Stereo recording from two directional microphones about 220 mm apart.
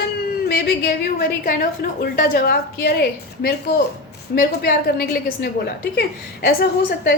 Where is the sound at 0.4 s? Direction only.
45° left (ahead or behind).